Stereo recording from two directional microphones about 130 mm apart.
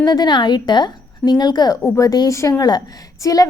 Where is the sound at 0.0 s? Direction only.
35° left (ahead or behind).